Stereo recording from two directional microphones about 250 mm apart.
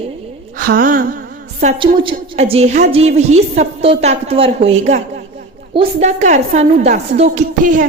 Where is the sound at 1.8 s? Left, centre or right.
Centre.